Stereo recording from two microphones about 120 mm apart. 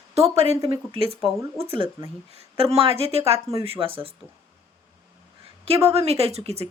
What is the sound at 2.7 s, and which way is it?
Speech, 55° right (ahead or behind).